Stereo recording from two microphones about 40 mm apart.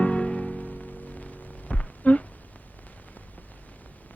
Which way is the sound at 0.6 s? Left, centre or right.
Left.